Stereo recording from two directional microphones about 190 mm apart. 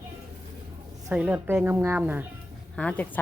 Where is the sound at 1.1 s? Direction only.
5° right (ahead or behind).